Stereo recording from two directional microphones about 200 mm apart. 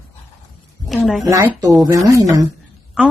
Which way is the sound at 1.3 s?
15° right (ahead or behind).